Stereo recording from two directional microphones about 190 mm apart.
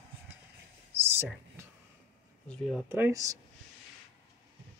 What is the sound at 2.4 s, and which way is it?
Speech, centre (ahead or behind).